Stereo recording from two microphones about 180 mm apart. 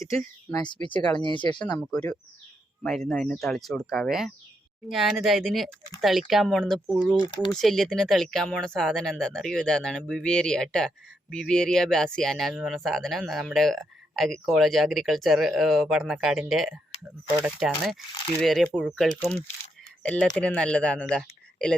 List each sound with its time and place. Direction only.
0.7 s speech: 25° left (ahead or behind)
1.8 s speech: 5° left (ahead or behind)